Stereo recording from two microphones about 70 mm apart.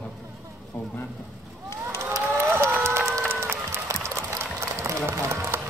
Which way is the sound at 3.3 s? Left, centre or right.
Right.